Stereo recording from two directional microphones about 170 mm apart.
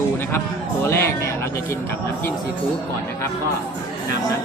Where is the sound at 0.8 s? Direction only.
15° left (ahead or behind).